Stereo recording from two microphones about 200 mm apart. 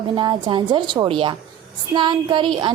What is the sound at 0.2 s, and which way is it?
A woman's voice, 25° right (ahead or behind).